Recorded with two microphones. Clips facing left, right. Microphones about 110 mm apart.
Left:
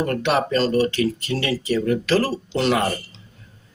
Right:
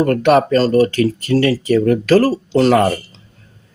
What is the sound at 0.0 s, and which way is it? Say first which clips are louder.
Speech: right 8 dB; 45° right (ahead or behind).